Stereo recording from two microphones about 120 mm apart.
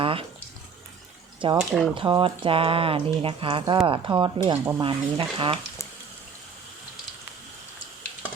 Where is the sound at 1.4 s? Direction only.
45° right (ahead or behind).